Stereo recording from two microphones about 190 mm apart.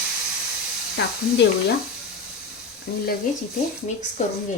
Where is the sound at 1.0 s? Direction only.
60° left (ahead or behind).